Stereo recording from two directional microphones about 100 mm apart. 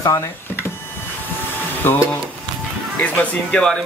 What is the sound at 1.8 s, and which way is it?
Speech, 20° left (ahead or behind).